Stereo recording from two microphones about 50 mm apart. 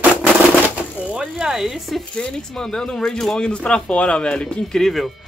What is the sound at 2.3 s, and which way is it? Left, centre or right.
Speech, centre.